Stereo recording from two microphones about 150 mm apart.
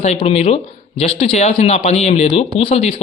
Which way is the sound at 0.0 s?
45° left (ahead or behind).